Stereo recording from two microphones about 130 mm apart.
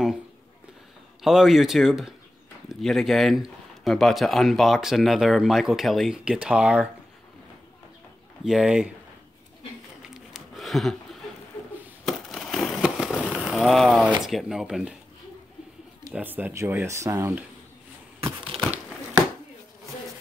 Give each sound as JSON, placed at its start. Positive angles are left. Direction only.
{"t": 1.2, "sound": "speech", "side_deg": -5}
{"t": 8.5, "sound": "speech", "side_deg": -5}
{"t": 10.3, "sound": "a sound", "side_deg": 0}
{"t": 12.0, "sound": "fireworks", "side_deg": 0}
{"t": 14.2, "sound": "speech", "side_deg": -5}
{"t": 16.1, "sound": "speech", "side_deg": -15}
{"t": 18.5, "sound": "crumpling", "side_deg": -50}